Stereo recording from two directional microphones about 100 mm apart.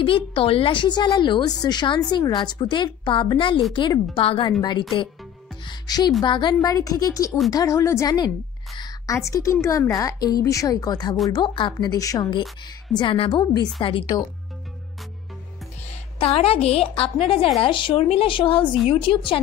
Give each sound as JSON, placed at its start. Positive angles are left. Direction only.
{"t": 0.0, "sound": "a woman's voice", "side_deg": 60}
{"t": 4.5, "sound": "a woman's voice", "side_deg": 45}
{"t": 8.7, "sound": "a sound", "side_deg": 45}
{"t": 9.1, "sound": "a woman's voice", "side_deg": 30}
{"t": 11.4, "sound": "a woman's voice", "side_deg": 55}
{"t": 11.9, "sound": "a woman's voice", "side_deg": 40}
{"t": 12.9, "sound": "a woman's voice", "side_deg": 55}
{"t": 16.2, "sound": "a woman's voice", "side_deg": 80}
{"t": 17.6, "sound": "a woman's voice", "side_deg": 55}
{"t": 18.0, "sound": "a woman's voice", "side_deg": 65}